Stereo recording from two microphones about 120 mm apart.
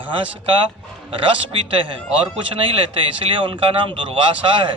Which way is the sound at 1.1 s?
45° right (ahead or behind).